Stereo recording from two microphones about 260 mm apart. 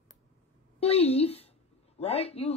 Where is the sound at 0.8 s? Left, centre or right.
Left.